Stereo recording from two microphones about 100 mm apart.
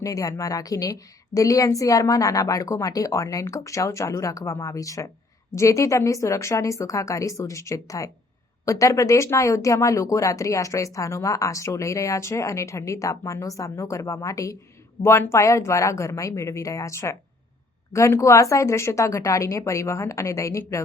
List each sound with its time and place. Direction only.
0.0 s a woman's voice: 35° left (ahead or behind)